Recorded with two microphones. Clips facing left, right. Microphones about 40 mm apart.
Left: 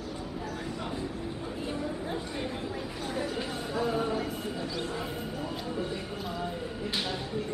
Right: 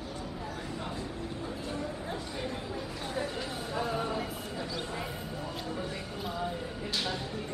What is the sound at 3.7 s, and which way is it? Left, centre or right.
Music, centre.